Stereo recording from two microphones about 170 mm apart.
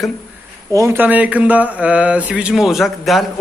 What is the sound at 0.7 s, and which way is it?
A man's voice, 15° right (ahead or behind).